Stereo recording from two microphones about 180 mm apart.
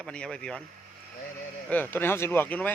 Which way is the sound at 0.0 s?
5° left (ahead or behind).